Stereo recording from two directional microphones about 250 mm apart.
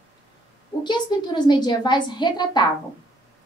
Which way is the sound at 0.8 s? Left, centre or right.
Centre.